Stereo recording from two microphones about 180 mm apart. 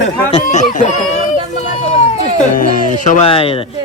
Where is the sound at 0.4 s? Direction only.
45° left (ahead or behind).